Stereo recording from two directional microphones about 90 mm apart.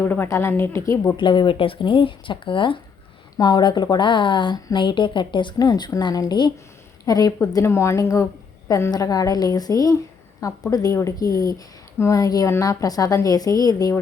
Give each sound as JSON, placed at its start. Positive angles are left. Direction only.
{"t": 0.0, "sound": "speech", "side_deg": 20}
{"t": 1.1, "sound": "speech", "side_deg": 60}
{"t": 3.3, "sound": "speech", "side_deg": 50}
{"t": 5.5, "sound": "a woman's voice", "side_deg": 50}
{"t": 7.0, "sound": "a woman's voice", "side_deg": 40}